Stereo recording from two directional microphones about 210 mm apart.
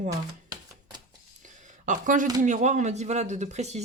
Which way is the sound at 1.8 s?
40° right (ahead or behind).